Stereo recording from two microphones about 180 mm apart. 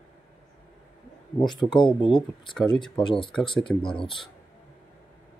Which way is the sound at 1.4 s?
25° left (ahead or behind).